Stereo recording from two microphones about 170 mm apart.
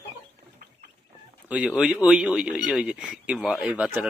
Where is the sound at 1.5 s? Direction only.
5° right (ahead or behind).